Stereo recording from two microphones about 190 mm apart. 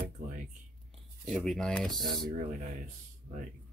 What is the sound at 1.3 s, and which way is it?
Speech, centre (ahead or behind).